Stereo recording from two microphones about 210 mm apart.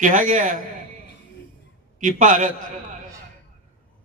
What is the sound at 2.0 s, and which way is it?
Speech, 40° right (ahead or behind).